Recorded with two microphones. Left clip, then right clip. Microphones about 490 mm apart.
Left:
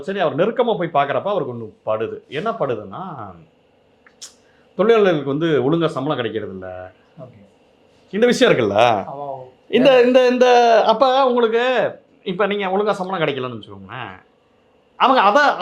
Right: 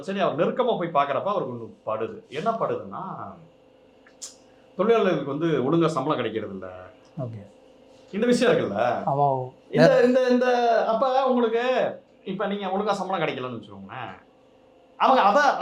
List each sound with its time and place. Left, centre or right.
0.0 s speech: left
4.8 s speech: left
8.1 s speech: left
9.9 s speech: left